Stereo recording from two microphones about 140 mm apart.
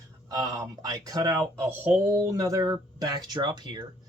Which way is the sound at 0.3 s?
25° right (ahead or behind).